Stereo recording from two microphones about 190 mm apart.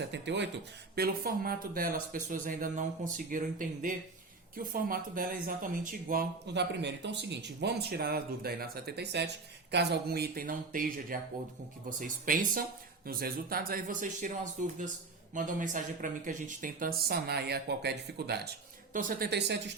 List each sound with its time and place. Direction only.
0.0 s speech: 65° right (ahead or behind)
0.9 s speech: 55° right (ahead or behind)
6.5 s speech: 65° right (ahead or behind)
18.9 s speech: 45° right (ahead or behind)